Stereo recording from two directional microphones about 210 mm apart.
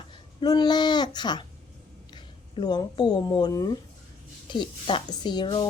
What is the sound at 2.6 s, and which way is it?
A woman's voice, 20° left (ahead or behind).